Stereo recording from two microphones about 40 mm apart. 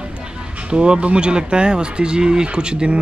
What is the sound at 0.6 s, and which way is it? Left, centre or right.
A man's voice, right.